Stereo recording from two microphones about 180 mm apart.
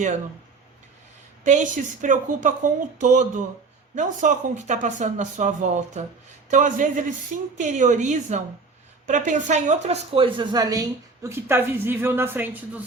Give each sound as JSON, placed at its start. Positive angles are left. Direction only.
{"t": 1.5, "sound": "speech", "side_deg": -45}